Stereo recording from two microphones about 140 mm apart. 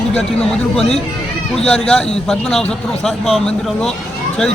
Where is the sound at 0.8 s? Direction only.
Centre (ahead or behind).